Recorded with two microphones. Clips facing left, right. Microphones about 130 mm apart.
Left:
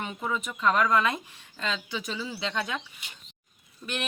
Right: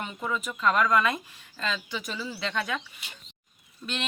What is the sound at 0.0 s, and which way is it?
Speech, 15° left (ahead or behind).